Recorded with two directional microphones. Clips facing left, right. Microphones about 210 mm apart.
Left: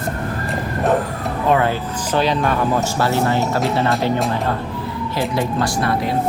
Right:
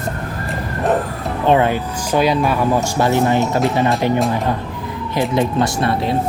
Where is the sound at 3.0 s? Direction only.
15° right (ahead or behind).